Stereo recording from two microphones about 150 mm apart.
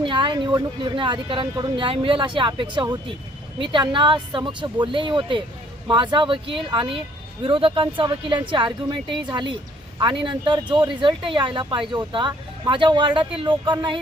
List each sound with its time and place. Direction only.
0.0 s speech: 35° right (ahead or behind)